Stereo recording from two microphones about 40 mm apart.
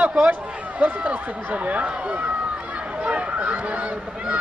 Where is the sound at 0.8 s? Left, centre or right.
Right.